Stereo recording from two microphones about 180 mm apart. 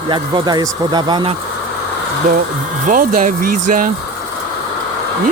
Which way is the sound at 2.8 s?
50° right (ahead or behind).